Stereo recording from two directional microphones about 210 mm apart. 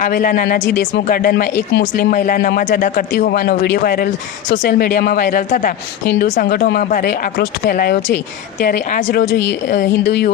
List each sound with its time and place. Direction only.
0.0 s speech: 40° left (ahead or behind)